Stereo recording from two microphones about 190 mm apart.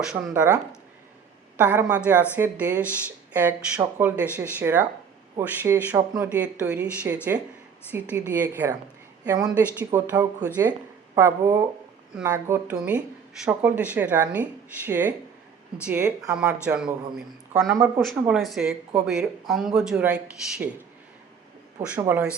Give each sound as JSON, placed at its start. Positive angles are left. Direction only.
{"t": 0.0, "sound": "a woman's voice", "side_deg": -5}
{"t": 17.7, "sound": "speech", "side_deg": -10}
{"t": 18.0, "sound": "speech", "side_deg": 0}
{"t": 21.8, "sound": "speech", "side_deg": -10}